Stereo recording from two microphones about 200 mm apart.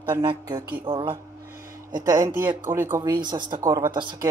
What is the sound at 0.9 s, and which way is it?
Speech, 25° right (ahead or behind).